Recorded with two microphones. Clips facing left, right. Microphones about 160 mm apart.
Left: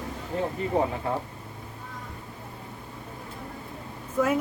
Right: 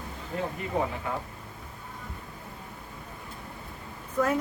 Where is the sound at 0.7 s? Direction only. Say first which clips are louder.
Left 3 dB; 30° left (ahead or behind).